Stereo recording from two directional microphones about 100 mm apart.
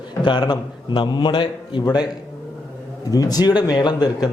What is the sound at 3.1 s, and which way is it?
Speech, 40° left (ahead or behind).